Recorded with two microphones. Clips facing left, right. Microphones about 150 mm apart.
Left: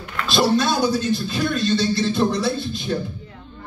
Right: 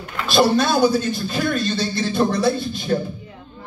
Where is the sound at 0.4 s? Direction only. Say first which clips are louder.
Right 3 dB; 55° right (ahead or behind).